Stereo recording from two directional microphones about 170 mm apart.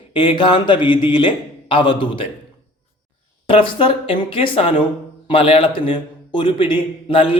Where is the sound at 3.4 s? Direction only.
30° left (ahead or behind).